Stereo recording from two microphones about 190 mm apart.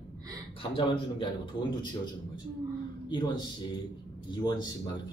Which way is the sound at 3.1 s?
20° left (ahead or behind).